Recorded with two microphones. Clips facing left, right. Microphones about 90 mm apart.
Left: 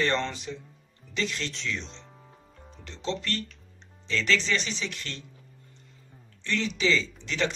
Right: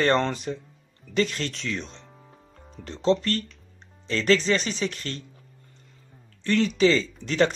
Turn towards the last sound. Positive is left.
turn(degrees=-45)  # may be behind; listen again after turning